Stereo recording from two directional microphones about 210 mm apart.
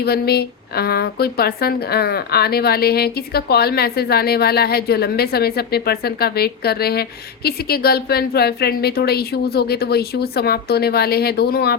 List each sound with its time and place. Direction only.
0.0 s speech: 50° left (ahead or behind)